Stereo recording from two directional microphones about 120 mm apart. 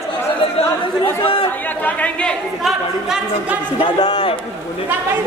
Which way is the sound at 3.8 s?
50° left (ahead or behind).